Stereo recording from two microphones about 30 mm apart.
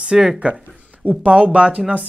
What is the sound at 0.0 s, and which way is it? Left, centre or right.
Speech, right.